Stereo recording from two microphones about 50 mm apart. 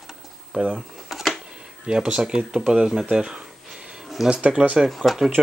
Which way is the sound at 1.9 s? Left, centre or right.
Centre.